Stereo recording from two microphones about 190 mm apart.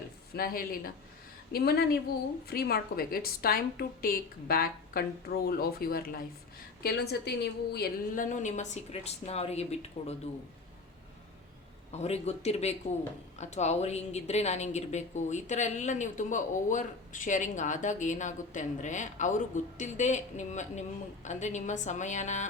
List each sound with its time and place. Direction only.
0.3 s a woman's voice: 50° left (ahead or behind); by 10.2 s 35° left (ahead or behind)
11.9 s a woman's voice: 35° left (ahead or behind)